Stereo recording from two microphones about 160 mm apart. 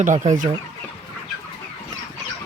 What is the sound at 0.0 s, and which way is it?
Speech, 50° right (ahead or behind).